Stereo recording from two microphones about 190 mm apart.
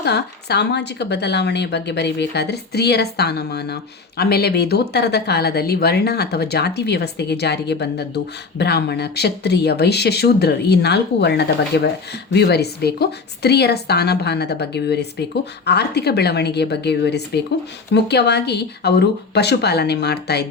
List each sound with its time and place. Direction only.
0.0 s speech: 60° left (ahead or behind)